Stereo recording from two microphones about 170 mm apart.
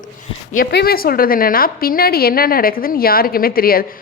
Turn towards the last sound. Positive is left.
turn(degrees=60)  # may be behind; listen again after turning